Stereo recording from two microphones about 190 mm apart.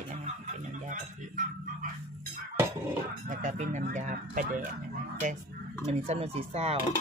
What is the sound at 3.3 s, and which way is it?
Speech, 40° right (ahead or behind).